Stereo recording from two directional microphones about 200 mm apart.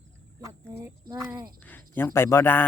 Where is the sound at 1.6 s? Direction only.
10° left (ahead or behind).